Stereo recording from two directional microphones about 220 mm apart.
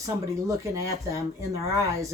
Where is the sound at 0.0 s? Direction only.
15° right (ahead or behind).